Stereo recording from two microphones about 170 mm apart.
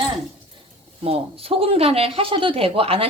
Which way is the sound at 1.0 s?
35° right (ahead or behind).